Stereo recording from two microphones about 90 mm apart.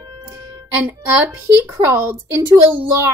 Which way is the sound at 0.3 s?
35° right (ahead or behind).